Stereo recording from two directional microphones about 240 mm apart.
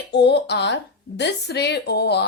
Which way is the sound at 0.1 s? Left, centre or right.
Left.